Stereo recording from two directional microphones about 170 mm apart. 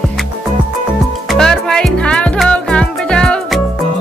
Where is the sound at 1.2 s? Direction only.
5° left (ahead or behind).